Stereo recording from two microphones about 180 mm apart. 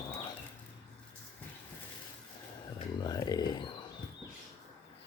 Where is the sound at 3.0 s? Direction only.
20° left (ahead or behind).